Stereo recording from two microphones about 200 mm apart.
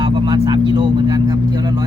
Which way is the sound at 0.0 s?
25° right (ahead or behind).